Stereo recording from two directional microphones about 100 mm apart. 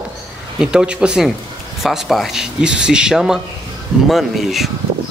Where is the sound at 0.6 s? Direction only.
10° right (ahead or behind).